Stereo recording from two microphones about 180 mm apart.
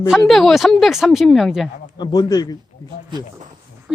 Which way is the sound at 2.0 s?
20° left (ahead or behind).